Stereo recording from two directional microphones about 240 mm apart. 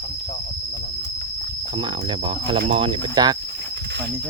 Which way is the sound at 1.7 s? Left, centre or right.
Centre.